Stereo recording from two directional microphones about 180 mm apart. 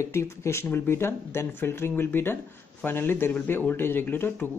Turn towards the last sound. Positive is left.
turn(degrees=10)  # may be behind; listen again after turning